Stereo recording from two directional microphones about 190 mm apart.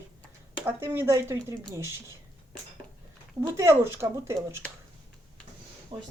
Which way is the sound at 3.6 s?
15° right (ahead or behind).